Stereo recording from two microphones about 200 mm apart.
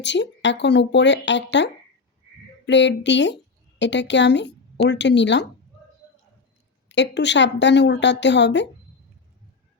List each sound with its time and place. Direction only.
0.0 s a woman's voice: 60° left (ahead or behind)
6.8 s a woman's voice: 60° left (ahead or behind)